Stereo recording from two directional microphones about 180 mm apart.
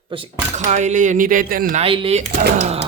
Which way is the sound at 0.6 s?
40° right (ahead or behind).